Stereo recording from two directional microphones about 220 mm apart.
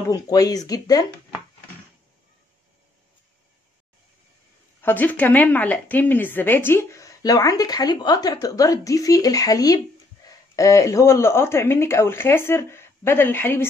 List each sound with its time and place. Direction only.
0.1 s a woman's voice: 15° left (ahead or behind)
4.8 s a woman's voice: 10° left (ahead or behind)